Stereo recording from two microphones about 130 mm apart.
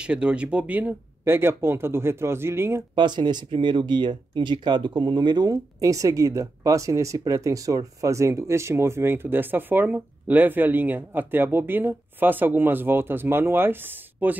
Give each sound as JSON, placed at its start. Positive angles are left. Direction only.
{"t": 0.0, "sound": "speech", "side_deg": -10}
{"t": 3.0, "sound": "speech", "side_deg": -35}